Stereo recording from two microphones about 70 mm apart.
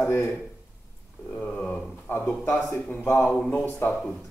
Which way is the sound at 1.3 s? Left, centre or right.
Centre.